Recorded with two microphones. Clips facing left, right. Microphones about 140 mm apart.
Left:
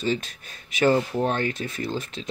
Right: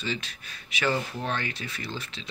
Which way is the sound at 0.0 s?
45° left (ahead or behind).